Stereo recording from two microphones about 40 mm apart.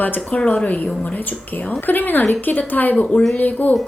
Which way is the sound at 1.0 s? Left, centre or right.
Left.